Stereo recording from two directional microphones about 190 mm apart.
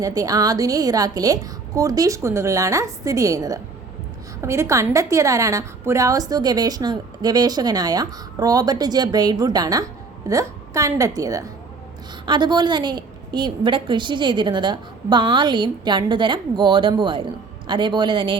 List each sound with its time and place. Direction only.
0.0 s a woman's voice: 20° right (ahead or behind)